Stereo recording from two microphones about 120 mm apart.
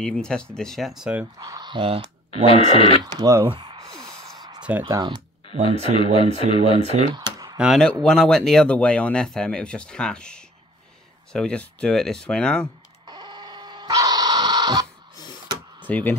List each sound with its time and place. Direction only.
0.0 s speech: 5° left (ahead or behind)
1.4 s speech: 35° right (ahead or behind)
2.4 s speech: 50° left (ahead or behind)
3.0 s speech: 35° right (ahead or behind)
3.4 s a sound: 45° right (ahead or behind)
4.6 s speech: 15° right (ahead or behind)
4.9 s speech: 40° right (ahead or behind)
5.5 s speech: 50° left (ahead or behind)
6.8 s speech: 60° right (ahead or behind)
7.2 s a sound: 30° right (ahead or behind)
7.5 s speech: 5° right (ahead or behind)
7.8 s speech: 10° left (ahead or behind)
13.0 s a sound: 35° right (ahead or behind)
15.9 s speech: 15° left (ahead or behind)